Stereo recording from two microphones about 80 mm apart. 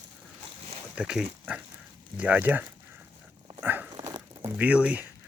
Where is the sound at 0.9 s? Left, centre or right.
Centre.